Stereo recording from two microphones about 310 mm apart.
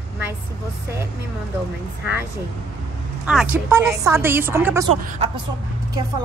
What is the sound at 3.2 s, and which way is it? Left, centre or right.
Speech, centre.